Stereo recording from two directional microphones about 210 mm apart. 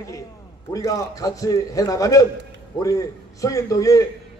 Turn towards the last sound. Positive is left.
turn(degrees=15)  # may be behind; listen again after turning